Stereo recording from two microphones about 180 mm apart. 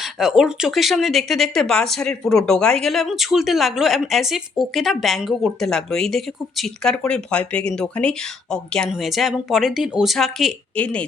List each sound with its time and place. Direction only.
0.0 s speech: centre (ahead or behind)